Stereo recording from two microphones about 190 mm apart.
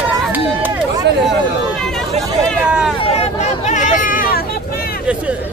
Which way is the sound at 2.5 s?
Centre (ahead or behind).